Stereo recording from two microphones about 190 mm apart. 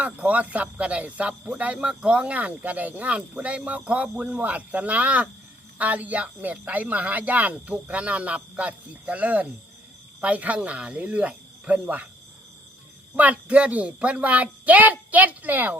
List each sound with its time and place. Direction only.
0.0 s speech: 5° right (ahead or behind)
13.1 s speech: 10° right (ahead or behind)